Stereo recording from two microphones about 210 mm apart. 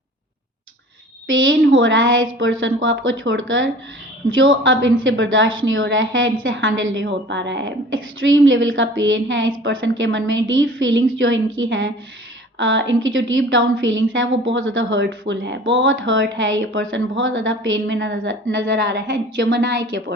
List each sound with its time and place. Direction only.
1.3 s a woman's voice: 65° right (ahead or behind)